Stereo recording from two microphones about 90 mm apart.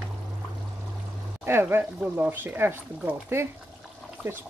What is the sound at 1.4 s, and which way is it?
Speech, 25° right (ahead or behind).